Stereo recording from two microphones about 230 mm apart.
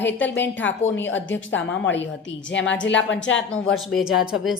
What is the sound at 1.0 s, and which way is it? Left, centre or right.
A woman's voice, left.